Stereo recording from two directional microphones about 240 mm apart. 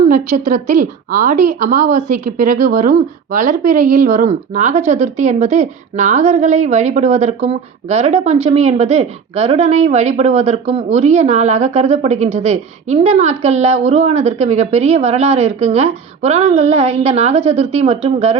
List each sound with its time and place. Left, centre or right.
0.0 s a woman's voice: right